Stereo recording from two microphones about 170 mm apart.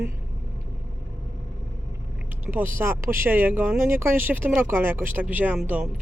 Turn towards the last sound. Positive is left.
turn(degrees=-10)  # may be behind; listen again after turning